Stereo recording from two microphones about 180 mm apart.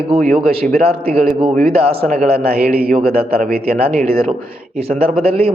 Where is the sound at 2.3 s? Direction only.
60° right (ahead or behind).